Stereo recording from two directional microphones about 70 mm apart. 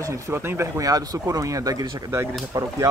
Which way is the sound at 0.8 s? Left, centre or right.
Right.